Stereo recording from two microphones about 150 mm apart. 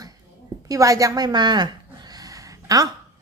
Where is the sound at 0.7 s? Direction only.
20° right (ahead or behind).